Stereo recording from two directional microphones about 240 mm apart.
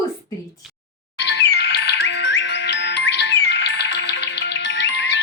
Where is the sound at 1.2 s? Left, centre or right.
Left.